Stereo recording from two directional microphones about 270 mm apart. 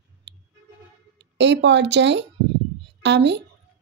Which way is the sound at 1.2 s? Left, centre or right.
Right.